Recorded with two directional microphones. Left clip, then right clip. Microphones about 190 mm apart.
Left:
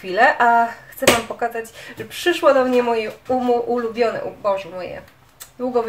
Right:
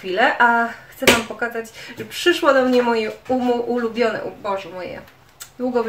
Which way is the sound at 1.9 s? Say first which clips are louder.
Right 2 dB; 5° right (ahead or behind).